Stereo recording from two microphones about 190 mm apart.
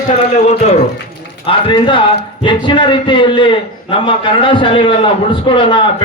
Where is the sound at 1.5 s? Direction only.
25° left (ahead or behind).